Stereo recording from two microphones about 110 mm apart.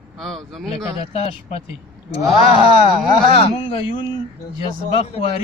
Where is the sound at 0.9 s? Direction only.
65° left (ahead or behind).